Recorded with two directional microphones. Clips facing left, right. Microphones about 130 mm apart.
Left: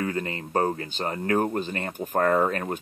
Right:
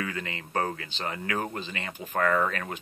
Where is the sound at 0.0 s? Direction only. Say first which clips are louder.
Left 5 dB; 40° left (ahead or behind).